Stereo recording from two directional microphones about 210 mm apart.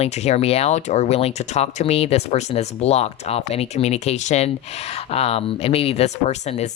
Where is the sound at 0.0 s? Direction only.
30° left (ahead or behind).